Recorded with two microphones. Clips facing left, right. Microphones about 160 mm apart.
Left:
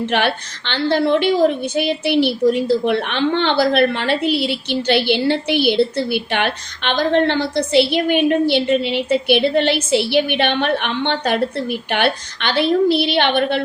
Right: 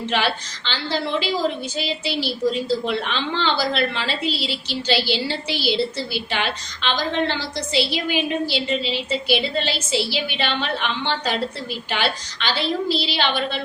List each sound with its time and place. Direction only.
0.0 s a woman's voice: 55° left (ahead or behind)